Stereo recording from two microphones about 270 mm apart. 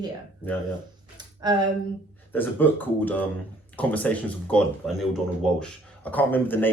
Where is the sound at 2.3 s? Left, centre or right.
Centre.